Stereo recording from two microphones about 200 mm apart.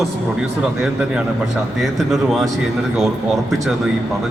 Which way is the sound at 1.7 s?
Centre (ahead or behind).